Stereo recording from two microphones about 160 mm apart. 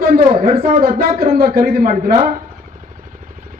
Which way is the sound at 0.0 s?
65° right (ahead or behind).